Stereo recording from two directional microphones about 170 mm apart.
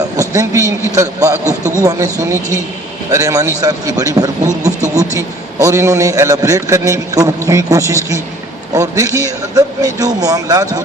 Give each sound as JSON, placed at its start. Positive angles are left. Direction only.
{"t": 0.2, "sound": "a sound", "side_deg": -20}
{"t": 0.9, "sound": "a man's voice", "side_deg": -20}
{"t": 3.1, "sound": "a man's voice", "side_deg": -20}